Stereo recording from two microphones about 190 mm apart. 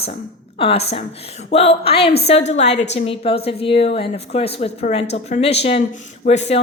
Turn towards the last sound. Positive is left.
turn(degrees=35)  # may be behind; listen again after turning